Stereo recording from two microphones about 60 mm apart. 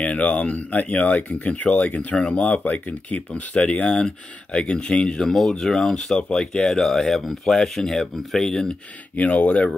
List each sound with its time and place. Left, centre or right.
0.0 s speech: left
9.1 s speech: left